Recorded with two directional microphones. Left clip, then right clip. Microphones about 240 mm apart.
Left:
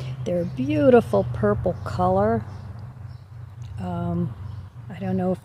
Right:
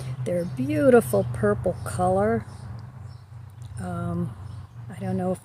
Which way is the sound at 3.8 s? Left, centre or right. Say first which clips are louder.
Left 3 dB; centre.